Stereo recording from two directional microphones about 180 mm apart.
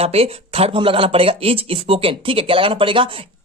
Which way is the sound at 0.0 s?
35° right (ahead or behind).